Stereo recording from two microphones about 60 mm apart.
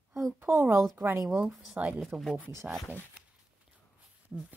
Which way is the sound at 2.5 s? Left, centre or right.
Right.